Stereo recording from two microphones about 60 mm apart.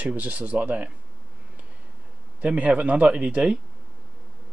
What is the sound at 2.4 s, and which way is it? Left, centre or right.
Speech, right.